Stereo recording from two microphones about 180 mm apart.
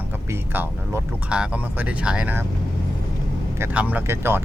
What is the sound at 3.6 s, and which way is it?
Speech, 10° right (ahead or behind).